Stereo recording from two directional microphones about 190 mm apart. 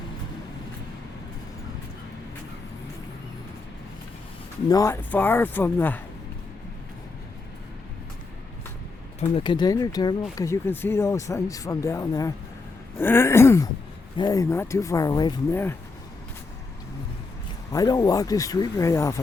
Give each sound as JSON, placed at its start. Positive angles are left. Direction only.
{"t": 4.7, "sound": "speech", "side_deg": 15}
{"t": 9.3, "sound": "speech", "side_deg": 25}
{"t": 17.7, "sound": "speech", "side_deg": 20}